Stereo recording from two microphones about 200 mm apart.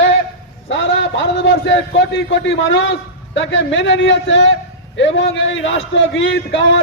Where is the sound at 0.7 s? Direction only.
65° left (ahead or behind).